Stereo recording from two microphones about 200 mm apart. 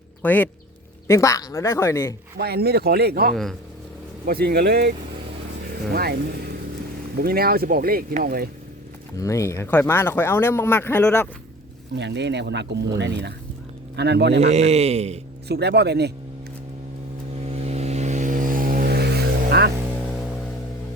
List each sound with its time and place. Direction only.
0.2 s speech: 10° left (ahead or behind)
2.4 s speech: 50° right (ahead or behind)
7.2 s speech: 50° right (ahead or behind)
9.2 s speech: 15° left (ahead or behind)
11.9 s speech: 60° right (ahead or behind)
14.3 s speech: 35° right (ahead or behind)
15.4 s speech: 55° right (ahead or behind)
17.4 s vehicle: 30° right (ahead or behind); by 19.7 s 55° right (ahead or behind)